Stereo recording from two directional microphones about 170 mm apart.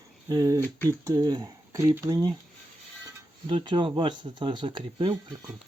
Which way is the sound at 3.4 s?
30° right (ahead or behind).